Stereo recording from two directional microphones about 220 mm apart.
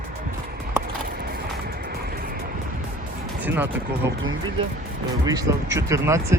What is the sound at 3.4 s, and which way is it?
Speech, 10° right (ahead or behind).